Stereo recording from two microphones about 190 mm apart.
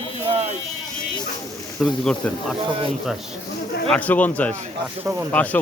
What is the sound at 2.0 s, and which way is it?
Speech, 5° left (ahead or behind).